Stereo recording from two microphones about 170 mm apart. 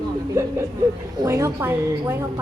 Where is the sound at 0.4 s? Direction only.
15° right (ahead or behind).